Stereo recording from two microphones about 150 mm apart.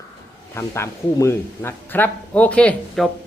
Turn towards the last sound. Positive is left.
turn(degrees=5)  # may be behind; listen again after turning